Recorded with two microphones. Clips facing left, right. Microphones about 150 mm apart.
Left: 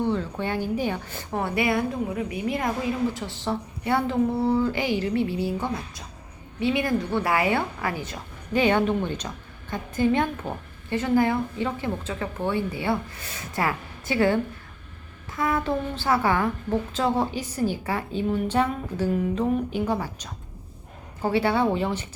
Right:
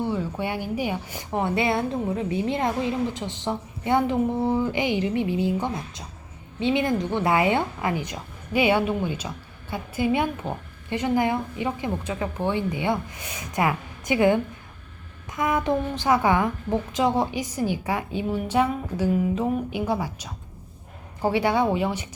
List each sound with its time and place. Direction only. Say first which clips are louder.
0.1 s a woman's voice: even; 10° right (ahead or behind)
10.4 s a woman's voice: right 1 dB; 10° left (ahead or behind)
10.8 s a woman's voice: left 1 dB; 15° right (ahead or behind)